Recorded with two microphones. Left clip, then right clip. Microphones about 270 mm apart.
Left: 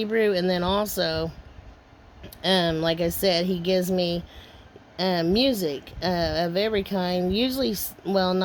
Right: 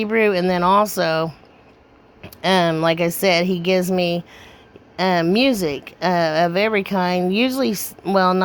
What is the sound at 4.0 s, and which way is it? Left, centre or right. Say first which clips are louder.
Speech: right 5 dB; right.